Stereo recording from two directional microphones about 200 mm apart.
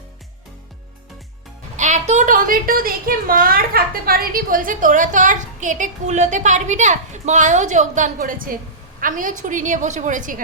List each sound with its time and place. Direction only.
1.7 s a woman's voice: 35° right (ahead or behind)